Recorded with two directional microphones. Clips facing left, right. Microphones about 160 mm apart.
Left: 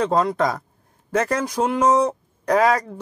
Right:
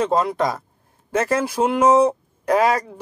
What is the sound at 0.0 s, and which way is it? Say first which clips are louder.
Speech: even; 5° right (ahead or behind).